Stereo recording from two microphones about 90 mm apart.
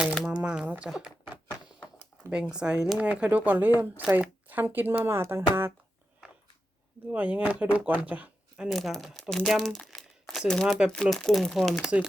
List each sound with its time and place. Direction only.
0.3 s speech: 10° right (ahead or behind)
2.3 s speech: 10° right (ahead or behind); by 5.7 s 25° right (ahead or behind)
7.1 s speech: 15° right (ahead or behind)
9.6 s crumpling: centre (ahead or behind)
10.7 s speech: 5° right (ahead or behind)